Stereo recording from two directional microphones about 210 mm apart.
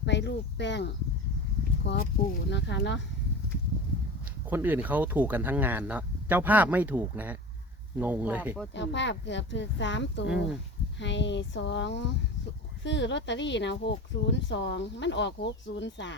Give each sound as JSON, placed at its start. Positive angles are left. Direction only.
{"t": 0.0, "sound": "speech", "side_deg": 55}
{"t": 4.4, "sound": "speech", "side_deg": -10}
{"t": 8.7, "sound": "speech", "side_deg": 60}
{"t": 10.2, "sound": "speech", "side_deg": -5}
{"t": 11.0, "sound": "speech", "side_deg": 55}